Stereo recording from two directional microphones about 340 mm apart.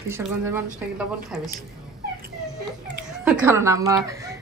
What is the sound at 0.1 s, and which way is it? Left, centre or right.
Speech, centre.